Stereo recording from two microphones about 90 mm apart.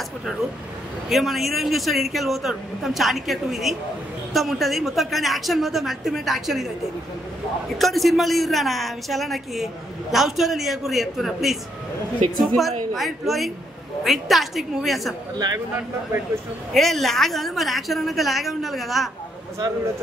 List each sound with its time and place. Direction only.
1.0 s a woman's voice: centre (ahead or behind)
7.7 s a woman's voice: centre (ahead or behind)
15.3 s speech: 45° right (ahead or behind)
16.7 s a woman's voice: centre (ahead or behind)